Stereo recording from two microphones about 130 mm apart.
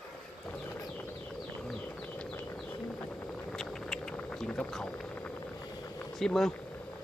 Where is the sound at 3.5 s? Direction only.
5° left (ahead or behind).